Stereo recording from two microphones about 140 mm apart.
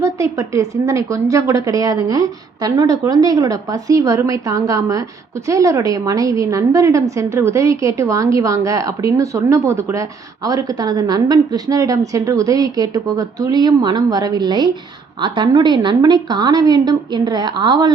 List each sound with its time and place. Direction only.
0.0 s a woman's voice: 20° right (ahead or behind)